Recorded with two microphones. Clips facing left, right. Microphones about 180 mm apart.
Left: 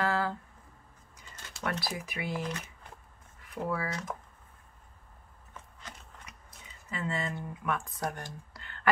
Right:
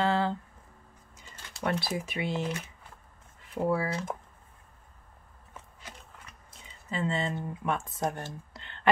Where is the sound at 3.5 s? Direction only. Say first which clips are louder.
Right 5 dB; 30° right (ahead or behind).